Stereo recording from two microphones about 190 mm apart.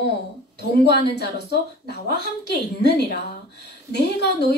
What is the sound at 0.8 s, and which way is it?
A woman's voice, 60° left (ahead or behind).